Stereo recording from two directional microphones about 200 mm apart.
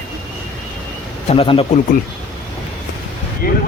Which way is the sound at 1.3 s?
25° left (ahead or behind).